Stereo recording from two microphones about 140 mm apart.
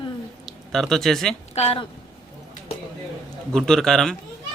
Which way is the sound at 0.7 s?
5° left (ahead or behind).